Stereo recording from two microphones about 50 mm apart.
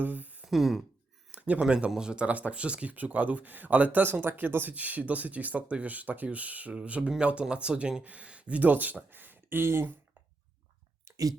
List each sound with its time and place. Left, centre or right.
0.0 s speech: right
0.4 s speech: centre
1.3 s a sound: right
1.6 s speech: centre
8.0 s speech: right